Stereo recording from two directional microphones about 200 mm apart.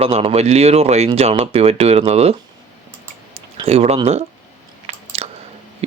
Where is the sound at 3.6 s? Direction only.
30° right (ahead or behind).